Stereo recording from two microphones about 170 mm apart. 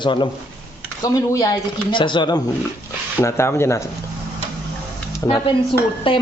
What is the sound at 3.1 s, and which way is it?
Speech, 15° left (ahead or behind).